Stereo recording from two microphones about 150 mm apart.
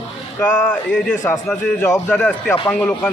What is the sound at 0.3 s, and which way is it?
A man's voice, 10° left (ahead or behind).